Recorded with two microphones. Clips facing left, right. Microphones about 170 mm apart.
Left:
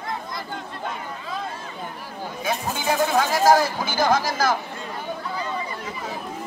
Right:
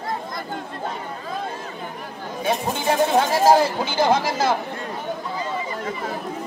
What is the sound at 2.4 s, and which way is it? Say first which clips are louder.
Speech: right 3 dB; 30° right (ahead or behind).